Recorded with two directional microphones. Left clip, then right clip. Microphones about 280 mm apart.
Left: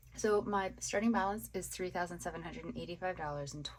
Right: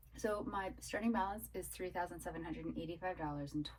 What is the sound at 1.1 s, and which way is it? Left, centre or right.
A woman's voice, left.